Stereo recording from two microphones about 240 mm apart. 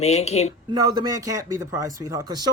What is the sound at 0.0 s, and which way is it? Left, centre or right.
Speech, left.